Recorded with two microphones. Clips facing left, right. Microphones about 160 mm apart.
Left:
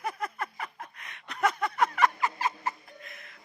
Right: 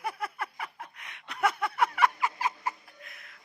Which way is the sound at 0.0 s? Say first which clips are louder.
Left 1 dB; 10° right (ahead or behind).